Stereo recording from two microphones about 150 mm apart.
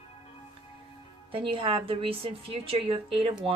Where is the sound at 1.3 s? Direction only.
35° right (ahead or behind).